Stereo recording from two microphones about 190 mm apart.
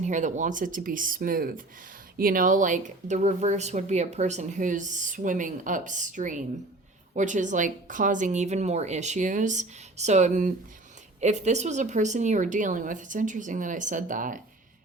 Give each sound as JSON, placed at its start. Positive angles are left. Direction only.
{"t": 0.0, "sound": "speech", "side_deg": -40}